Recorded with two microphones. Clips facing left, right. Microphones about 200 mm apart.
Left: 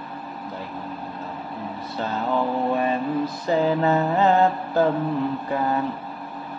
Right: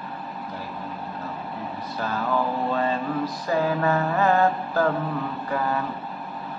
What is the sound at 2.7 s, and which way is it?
Mantra, 15° left (ahead or behind).